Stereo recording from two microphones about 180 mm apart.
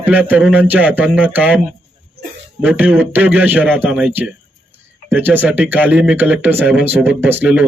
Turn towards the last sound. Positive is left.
turn(degrees=-10)  # may be behind; listen again after turning